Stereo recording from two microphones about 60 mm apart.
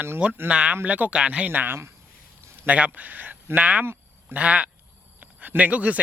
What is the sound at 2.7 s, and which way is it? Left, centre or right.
Speech, right.